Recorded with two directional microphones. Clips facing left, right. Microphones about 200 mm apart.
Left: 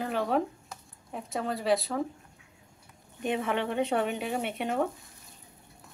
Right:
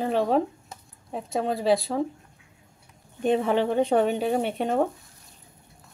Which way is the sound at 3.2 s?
35° right (ahead or behind).